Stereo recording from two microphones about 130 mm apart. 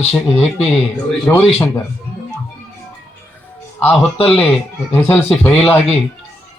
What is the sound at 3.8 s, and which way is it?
Speech, 15° left (ahead or behind).